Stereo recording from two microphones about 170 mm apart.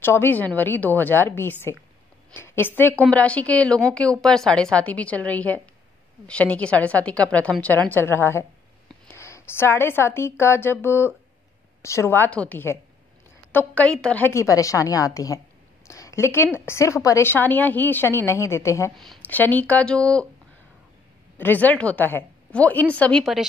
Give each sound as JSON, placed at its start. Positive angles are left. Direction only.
{"t": 0.0, "sound": "a woman's voice", "side_deg": 15}
{"t": 15.9, "sound": "a sound", "side_deg": 20}
{"t": 16.5, "sound": "a woman's voice", "side_deg": 15}
{"t": 18.9, "sound": "speech", "side_deg": 5}
{"t": 21.4, "sound": "a woman's voice", "side_deg": 10}